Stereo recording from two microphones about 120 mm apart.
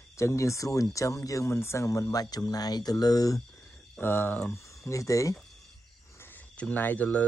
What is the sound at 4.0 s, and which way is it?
Speech, 20° left (ahead or behind).